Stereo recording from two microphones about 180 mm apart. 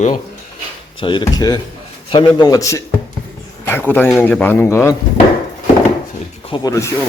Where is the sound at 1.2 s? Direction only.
20° left (ahead or behind).